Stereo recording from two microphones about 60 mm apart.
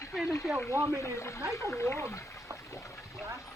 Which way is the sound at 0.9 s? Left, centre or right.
Left.